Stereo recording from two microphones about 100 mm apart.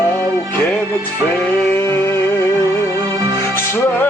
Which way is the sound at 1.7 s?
20° left (ahead or behind).